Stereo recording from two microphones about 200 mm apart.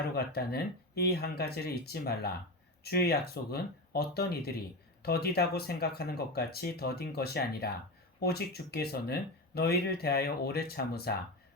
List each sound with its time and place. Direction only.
0.1 s speech: 50° left (ahead or behind)